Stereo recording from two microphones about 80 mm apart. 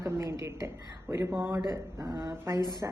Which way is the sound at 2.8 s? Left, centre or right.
Right.